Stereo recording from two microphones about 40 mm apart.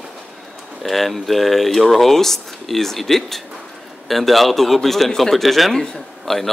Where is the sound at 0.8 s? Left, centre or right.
Centre.